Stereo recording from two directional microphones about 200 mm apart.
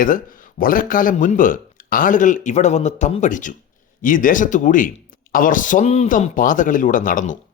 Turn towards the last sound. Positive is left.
turn(degrees=40)  # may be behind; listen again after turning